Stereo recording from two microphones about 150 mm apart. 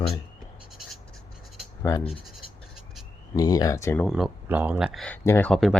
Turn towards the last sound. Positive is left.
turn(degrees=0)  # may be behind; listen again after turning